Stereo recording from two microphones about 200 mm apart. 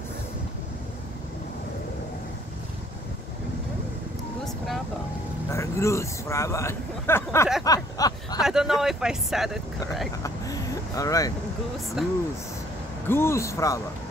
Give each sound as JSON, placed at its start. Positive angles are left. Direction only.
{"t": 5.5, "sound": "a man's voice", "side_deg": 15}
{"t": 7.6, "sound": "a sound", "side_deg": 20}
{"t": 8.4, "sound": "speech", "side_deg": 0}
{"t": 10.2, "sound": "vehicle", "side_deg": 15}
{"t": 12.0, "sound": "speech", "side_deg": 0}
{"t": 13.1, "sound": "speech", "side_deg": 10}